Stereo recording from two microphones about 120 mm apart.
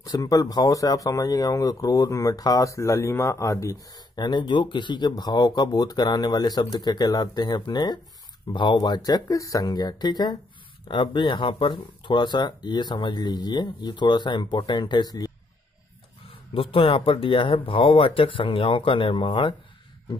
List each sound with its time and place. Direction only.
0.0 s speech: 30° left (ahead or behind)
16.5 s speech: 50° left (ahead or behind)